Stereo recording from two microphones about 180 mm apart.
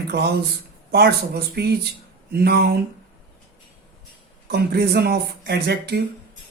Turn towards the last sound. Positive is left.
turn(degrees=-65)  # may be behind; listen again after turning